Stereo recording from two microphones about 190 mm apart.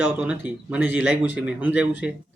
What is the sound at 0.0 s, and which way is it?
Speech, 5° right (ahead or behind).